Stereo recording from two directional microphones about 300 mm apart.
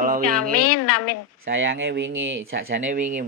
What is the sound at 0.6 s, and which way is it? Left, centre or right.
Speech, left.